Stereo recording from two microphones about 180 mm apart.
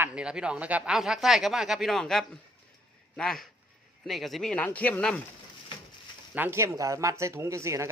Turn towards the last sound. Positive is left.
turn(degrees=-15)  # may be behind; listen again after turning